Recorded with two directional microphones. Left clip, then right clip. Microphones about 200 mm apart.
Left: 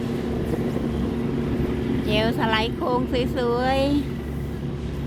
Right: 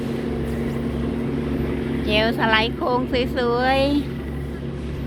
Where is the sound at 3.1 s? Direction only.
15° left (ahead or behind).